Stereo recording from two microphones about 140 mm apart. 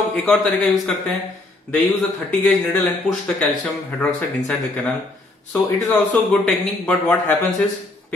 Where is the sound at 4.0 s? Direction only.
10° left (ahead or behind).